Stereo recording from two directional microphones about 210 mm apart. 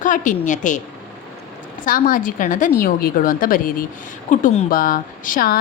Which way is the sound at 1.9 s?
40° left (ahead or behind).